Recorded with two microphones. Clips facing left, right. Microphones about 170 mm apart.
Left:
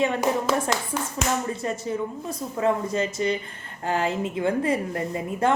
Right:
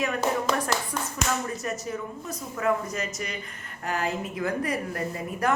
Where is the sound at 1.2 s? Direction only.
30° left (ahead or behind).